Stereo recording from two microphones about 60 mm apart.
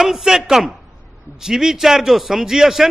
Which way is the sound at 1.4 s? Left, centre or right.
Centre.